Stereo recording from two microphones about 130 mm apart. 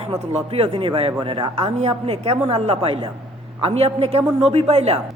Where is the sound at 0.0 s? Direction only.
50° right (ahead or behind).